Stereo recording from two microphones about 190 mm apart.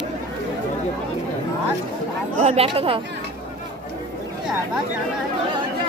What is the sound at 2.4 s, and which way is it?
Speech, 30° right (ahead or behind).